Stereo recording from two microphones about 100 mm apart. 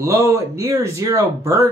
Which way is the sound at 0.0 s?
30° right (ahead or behind).